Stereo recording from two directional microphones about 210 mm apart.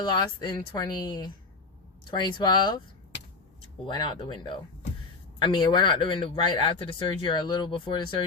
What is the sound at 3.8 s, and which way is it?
Speech, 20° left (ahead or behind).